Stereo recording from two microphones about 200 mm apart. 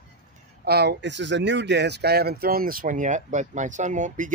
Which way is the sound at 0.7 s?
55° right (ahead or behind).